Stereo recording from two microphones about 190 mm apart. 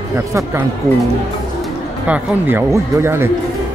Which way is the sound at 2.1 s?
10° right (ahead or behind).